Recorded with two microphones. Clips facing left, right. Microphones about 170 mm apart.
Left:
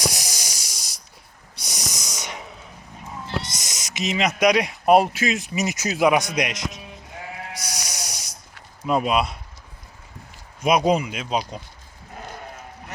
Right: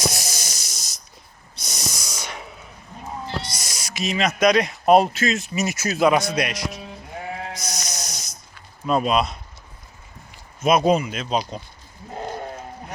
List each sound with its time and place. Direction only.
0.0 s hiss: 15° left (ahead or behind)
1.5 s a sound: 15° left (ahead or behind)
3.5 s speech: 20° left (ahead or behind)
7.6 s music: 10° left (ahead or behind)
8.9 s speech: 10° left (ahead or behind)
10.6 s speech: 15° left (ahead or behind)